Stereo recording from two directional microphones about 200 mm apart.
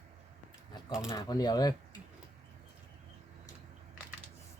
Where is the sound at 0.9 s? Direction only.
15° left (ahead or behind).